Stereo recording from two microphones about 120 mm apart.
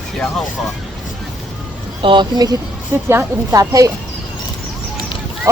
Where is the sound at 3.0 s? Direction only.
25° right (ahead or behind).